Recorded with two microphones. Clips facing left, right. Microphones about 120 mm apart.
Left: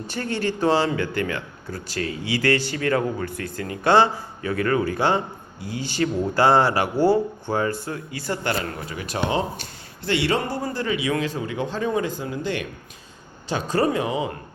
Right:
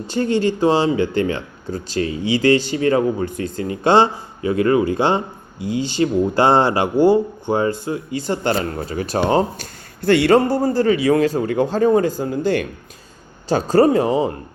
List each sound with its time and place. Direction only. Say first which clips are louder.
0.1 s speech: right 8 dB; 20° right (ahead or behind); by 14.3 s 35° right (ahead or behind)